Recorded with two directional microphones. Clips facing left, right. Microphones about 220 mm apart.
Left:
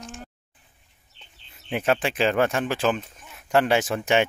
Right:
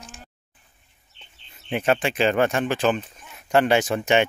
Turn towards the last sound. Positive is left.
turn(degrees=5)  # may be behind; listen again after turning